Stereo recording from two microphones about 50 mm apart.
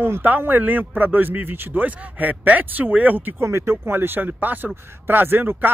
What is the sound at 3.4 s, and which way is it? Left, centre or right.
Speech, right.